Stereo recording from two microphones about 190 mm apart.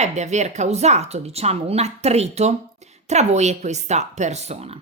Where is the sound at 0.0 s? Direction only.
35° right (ahead or behind).